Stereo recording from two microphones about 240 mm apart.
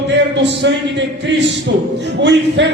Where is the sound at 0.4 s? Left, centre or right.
Right.